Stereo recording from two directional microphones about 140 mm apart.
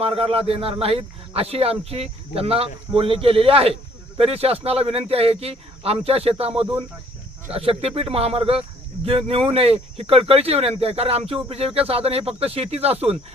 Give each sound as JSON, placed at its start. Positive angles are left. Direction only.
{"t": 0.0, "sound": "a man's voice", "side_deg": -45}